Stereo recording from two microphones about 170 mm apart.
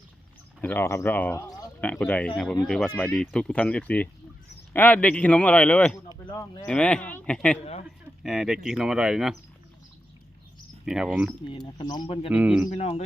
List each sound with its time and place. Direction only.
0.6 s speech: 10° left (ahead or behind)
6.1 s speech: 20° left (ahead or behind)
6.7 s speech: 5° left (ahead or behind)
7.6 s speech: 40° left (ahead or behind)
8.2 s speech: centre (ahead or behind)
10.8 s speech: 5° right (ahead or behind)
11.4 s speech: 25° left (ahead or behind)
12.3 s speech: 5° right (ahead or behind)
12.7 s speech: 40° left (ahead or behind)